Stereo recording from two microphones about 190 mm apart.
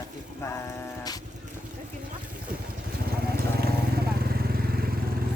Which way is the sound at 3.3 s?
55° right (ahead or behind).